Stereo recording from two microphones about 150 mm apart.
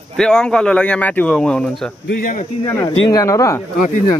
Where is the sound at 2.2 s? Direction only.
65° left (ahead or behind).